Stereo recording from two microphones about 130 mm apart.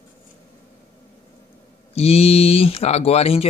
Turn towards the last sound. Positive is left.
turn(degrees=50)  # may be behind; listen again after turning